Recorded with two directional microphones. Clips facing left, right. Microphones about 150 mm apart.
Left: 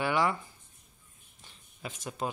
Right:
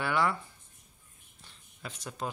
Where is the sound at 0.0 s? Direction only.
15° left (ahead or behind).